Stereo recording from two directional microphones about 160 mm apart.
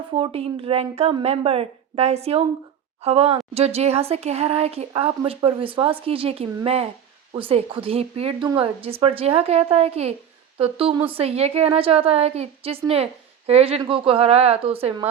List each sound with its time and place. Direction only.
0.1 s speech: 35° right (ahead or behind)